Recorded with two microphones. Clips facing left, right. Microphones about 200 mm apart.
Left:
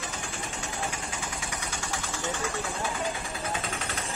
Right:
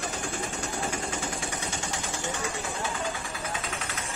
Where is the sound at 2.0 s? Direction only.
15° right (ahead or behind).